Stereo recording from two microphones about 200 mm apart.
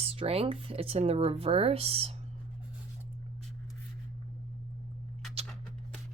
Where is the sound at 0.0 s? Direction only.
30° right (ahead or behind).